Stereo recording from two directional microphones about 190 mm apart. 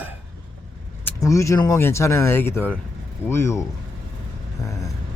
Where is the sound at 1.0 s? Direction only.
15° left (ahead or behind).